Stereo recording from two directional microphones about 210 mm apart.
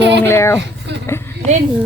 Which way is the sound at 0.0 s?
55° right (ahead or behind).